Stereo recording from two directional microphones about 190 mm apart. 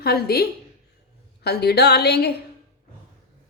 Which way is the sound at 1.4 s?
60° left (ahead or behind).